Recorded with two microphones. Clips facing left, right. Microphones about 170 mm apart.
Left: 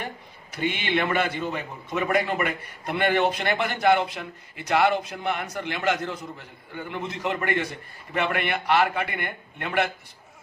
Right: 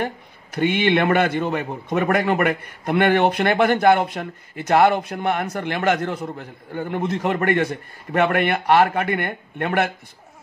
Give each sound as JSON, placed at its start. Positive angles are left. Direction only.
{"t": 0.6, "sound": "a man's voice", "side_deg": -55}